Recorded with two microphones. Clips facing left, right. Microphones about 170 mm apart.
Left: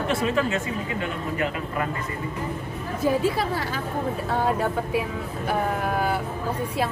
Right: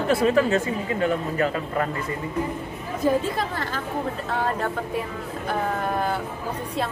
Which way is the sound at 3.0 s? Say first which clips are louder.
Even; 10° left (ahead or behind).